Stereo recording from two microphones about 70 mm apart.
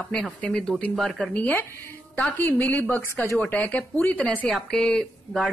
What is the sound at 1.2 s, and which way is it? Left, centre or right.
A woman's voice, left.